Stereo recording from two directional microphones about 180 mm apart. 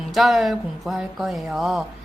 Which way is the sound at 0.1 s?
Centre (ahead or behind).